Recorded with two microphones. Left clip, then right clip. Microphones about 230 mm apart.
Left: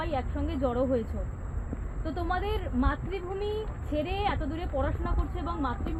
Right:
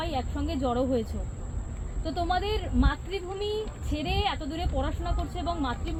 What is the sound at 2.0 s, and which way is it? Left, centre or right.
A woman's voice, right.